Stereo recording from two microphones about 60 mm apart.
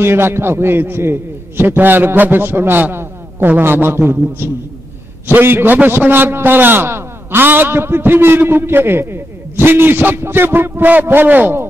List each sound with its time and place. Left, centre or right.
0.0 s a man's voice: right